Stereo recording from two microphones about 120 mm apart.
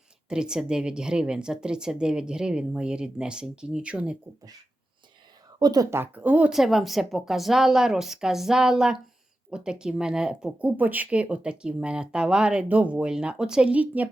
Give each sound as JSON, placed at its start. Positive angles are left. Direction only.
{"t": 0.3, "sound": "speech", "side_deg": -5}
{"t": 5.5, "sound": "speech", "side_deg": -35}
{"t": 5.9, "sound": "a woman's voice", "side_deg": -15}